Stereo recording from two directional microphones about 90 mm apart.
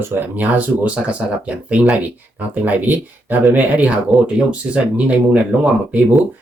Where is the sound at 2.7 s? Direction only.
20° right (ahead or behind).